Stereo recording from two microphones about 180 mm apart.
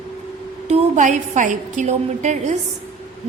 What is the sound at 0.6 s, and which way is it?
A woman's voice, 40° right (ahead or behind).